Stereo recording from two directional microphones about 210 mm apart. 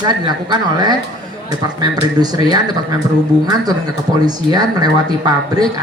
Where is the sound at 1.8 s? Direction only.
20° right (ahead or behind).